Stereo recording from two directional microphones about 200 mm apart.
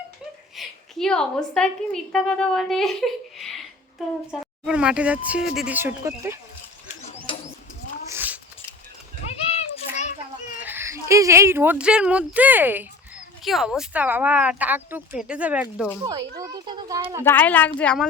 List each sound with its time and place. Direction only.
0.5 s a woman's voice: centre (ahead or behind)
6.8 s a sound: 35° left (ahead or behind)
8.0 s cat: 10° right (ahead or behind)
9.5 s a sound: 35° left (ahead or behind)
10.6 s speech: 10° right (ahead or behind)
16.4 s a child's voice: 20° right (ahead or behind)
17.2 s a woman's voice: 10° left (ahead or behind)